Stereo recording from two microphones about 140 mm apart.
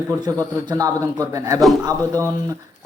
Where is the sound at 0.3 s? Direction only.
25° right (ahead or behind).